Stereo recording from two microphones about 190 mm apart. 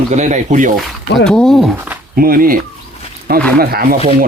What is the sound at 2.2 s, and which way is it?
Speech, 50° right (ahead or behind).